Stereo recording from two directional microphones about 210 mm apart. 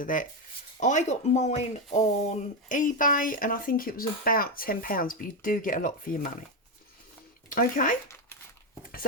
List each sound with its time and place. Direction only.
0.0 s speech: 40° left (ahead or behind)
7.5 s speech: 40° left (ahead or behind)